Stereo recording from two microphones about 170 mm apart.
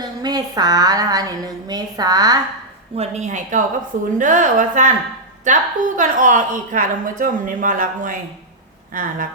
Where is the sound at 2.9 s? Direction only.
40° right (ahead or behind).